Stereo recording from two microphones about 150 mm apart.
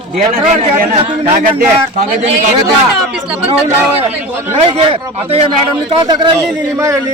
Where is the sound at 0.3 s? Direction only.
40° right (ahead or behind).